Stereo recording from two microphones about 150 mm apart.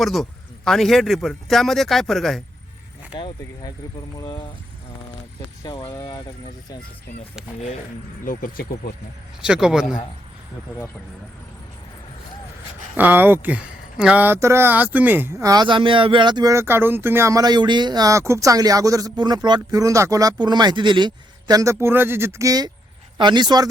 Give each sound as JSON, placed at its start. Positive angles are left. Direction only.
{"t": 0.0, "sound": "speech", "side_deg": 0}
{"t": 3.2, "sound": "speech", "side_deg": 35}
{"t": 5.6, "sound": "speech", "side_deg": 30}
{"t": 8.2, "sound": "speech", "side_deg": 70}
{"t": 9.4, "sound": "speech", "side_deg": -5}
{"t": 13.0, "sound": "speech", "side_deg": -15}